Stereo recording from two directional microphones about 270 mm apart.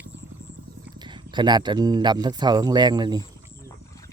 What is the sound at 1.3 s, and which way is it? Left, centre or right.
Speech, centre.